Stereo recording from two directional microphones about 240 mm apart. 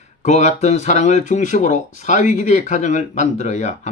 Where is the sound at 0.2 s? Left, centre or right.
Left.